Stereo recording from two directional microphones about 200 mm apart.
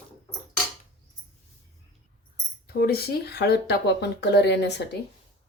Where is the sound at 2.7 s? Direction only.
50° left (ahead or behind).